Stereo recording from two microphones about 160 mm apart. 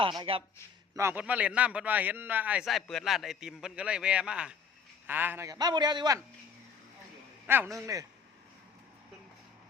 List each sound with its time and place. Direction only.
0.0 s a man's voice: 30° right (ahead or behind)
0.9 s a man's voice: 15° right (ahead or behind)
7.4 s a man's voice: 15° right (ahead or behind)